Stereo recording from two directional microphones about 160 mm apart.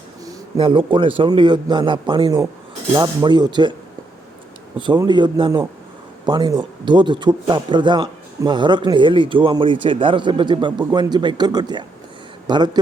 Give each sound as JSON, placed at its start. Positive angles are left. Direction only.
{"t": 0.6, "sound": "a man's voice", "side_deg": -35}
{"t": 4.8, "sound": "speech", "side_deg": -30}